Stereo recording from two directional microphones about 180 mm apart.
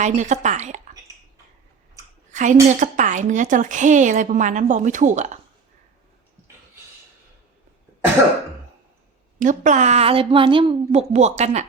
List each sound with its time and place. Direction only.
0.0 s a woman's voice: 40° right (ahead or behind)
2.3 s a woman's voice: 45° right (ahead or behind)
9.4 s a woman's voice: 45° right (ahead or behind)